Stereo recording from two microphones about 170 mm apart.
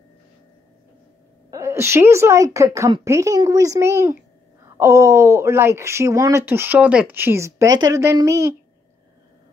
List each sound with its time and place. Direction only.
1.5 s a woman's voice: 15° right (ahead or behind)